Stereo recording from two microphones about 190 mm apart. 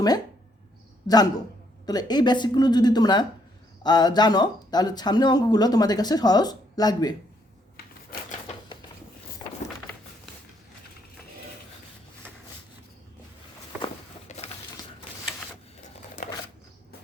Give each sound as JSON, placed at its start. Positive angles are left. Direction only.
{"t": 1.0, "sound": "speech", "side_deg": 20}
{"t": 7.8, "sound": "typewriter", "side_deg": 50}
{"t": 14.3, "sound": "crushing", "side_deg": 35}
{"t": 16.0, "sound": "a sound", "side_deg": 40}